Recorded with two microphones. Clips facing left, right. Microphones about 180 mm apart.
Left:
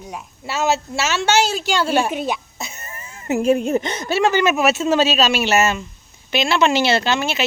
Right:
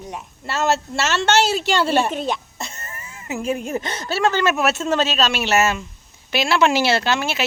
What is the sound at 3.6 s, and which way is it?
Speech, 20° left (ahead or behind).